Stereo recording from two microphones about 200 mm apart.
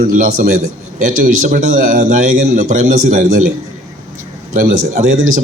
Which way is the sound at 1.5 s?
40° right (ahead or behind).